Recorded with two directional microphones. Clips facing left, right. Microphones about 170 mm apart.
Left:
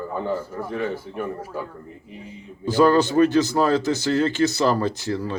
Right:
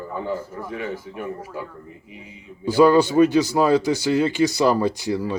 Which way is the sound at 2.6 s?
10° right (ahead or behind).